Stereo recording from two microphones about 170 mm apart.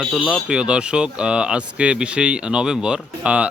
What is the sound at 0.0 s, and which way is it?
Speech, centre (ahead or behind).